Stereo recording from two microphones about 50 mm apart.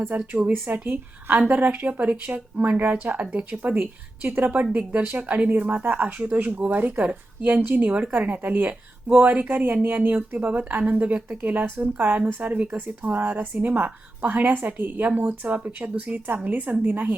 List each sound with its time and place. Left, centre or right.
0.3 s speech: right
4.6 s speech: right
11.8 s speech: right